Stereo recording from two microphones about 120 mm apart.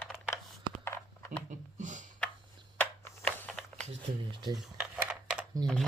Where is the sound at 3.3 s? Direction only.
10° left (ahead or behind).